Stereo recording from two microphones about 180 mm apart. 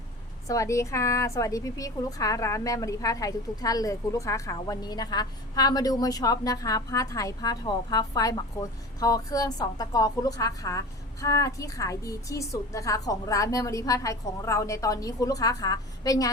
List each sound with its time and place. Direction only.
0.4 s a woman's voice: 20° left (ahead or behind)